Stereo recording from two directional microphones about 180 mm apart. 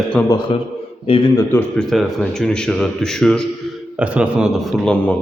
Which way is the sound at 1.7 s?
5° left (ahead or behind).